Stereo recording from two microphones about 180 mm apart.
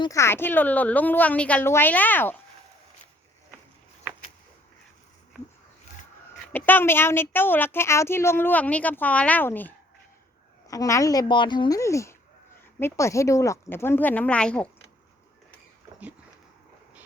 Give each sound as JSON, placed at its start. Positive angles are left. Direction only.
{"t": 0.0, "sound": "a woman's voice", "side_deg": 15}
{"t": 6.5, "sound": "a woman's voice", "side_deg": 10}